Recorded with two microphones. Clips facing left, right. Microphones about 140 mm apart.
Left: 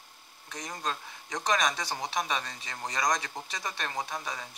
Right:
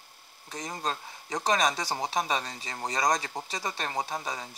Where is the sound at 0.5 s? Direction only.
30° right (ahead or behind).